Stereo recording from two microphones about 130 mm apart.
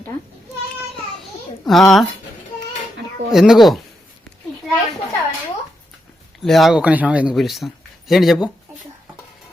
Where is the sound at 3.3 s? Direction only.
5° right (ahead or behind).